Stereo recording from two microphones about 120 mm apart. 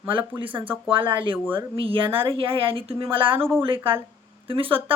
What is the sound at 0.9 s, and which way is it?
Speech, 45° right (ahead or behind).